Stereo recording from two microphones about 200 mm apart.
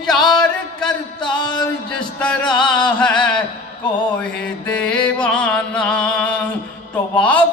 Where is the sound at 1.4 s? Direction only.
20° left (ahead or behind).